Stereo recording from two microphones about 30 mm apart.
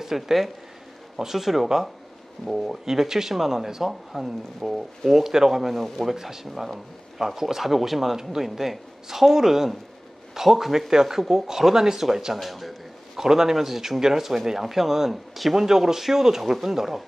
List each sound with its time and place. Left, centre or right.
0.0 s speech: centre
5.1 s speech: centre
5.6 s a man's voice: centre
10.9 s speech: centre
12.4 s a sound: centre
13.2 s speech: centre